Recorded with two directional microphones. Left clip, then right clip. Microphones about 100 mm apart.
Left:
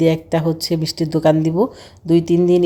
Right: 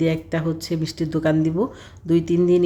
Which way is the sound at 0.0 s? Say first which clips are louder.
Left 6 dB; 35° left (ahead or behind).